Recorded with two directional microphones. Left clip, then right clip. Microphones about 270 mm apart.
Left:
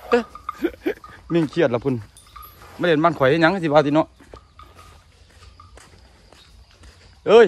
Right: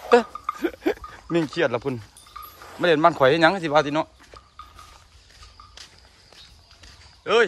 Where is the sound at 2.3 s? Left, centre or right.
Right.